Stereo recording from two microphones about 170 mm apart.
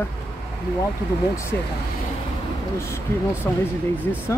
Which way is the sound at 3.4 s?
10° left (ahead or behind).